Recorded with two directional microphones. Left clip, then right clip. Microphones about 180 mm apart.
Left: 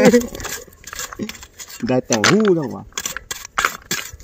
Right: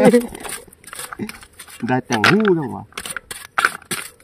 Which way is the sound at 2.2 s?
15° right (ahead or behind).